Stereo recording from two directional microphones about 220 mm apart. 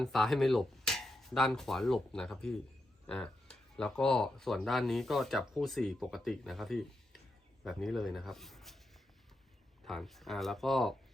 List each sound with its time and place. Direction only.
0.0 s a sound: centre (ahead or behind)
3.8 s speech: 5° left (ahead or behind)
9.8 s speech: centre (ahead or behind)